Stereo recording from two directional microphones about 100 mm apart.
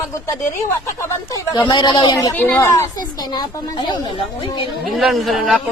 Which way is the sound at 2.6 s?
35° left (ahead or behind).